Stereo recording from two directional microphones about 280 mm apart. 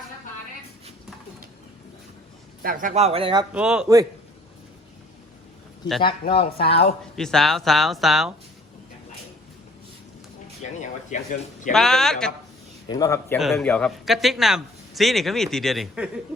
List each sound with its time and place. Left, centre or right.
2.6 s speech: right
3.5 s a man's voice: centre
6.0 s speech: centre
7.2 s a man's voice: centre
10.6 s speech: left
11.7 s a man's voice: centre